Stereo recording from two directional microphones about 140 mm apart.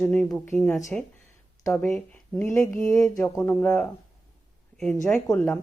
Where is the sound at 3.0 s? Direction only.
20° left (ahead or behind).